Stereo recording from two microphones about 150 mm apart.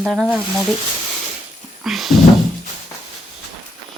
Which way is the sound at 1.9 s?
Centre (ahead or behind).